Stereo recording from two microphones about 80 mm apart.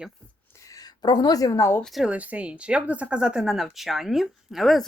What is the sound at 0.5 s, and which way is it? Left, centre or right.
Speech, left.